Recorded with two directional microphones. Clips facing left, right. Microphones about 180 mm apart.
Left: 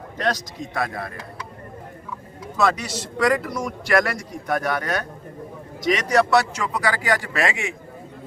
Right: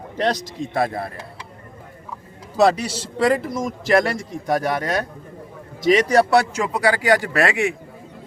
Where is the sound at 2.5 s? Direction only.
30° right (ahead or behind).